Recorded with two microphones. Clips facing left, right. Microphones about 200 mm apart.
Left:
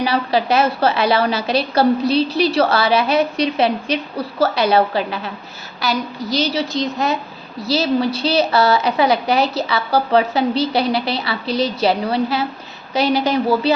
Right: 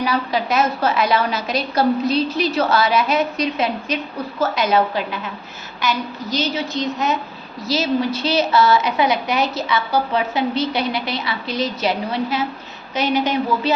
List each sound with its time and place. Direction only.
0.0 s a woman's voice: 30° left (ahead or behind)